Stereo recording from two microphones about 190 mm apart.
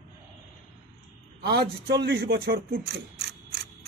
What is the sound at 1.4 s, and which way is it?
Speech, 60° right (ahead or behind).